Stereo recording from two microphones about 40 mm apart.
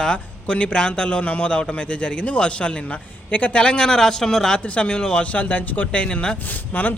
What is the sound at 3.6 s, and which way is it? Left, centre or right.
Speech, left.